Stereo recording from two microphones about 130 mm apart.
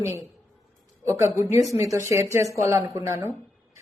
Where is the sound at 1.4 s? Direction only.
25° right (ahead or behind).